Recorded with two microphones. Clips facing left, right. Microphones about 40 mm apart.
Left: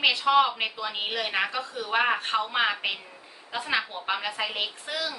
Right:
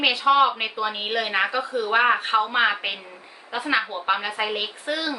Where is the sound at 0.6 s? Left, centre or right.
Right.